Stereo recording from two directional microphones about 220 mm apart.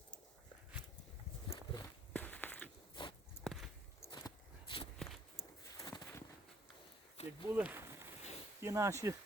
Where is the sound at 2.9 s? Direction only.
20° left (ahead or behind).